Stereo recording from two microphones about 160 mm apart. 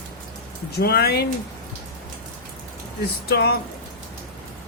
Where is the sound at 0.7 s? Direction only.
80° left.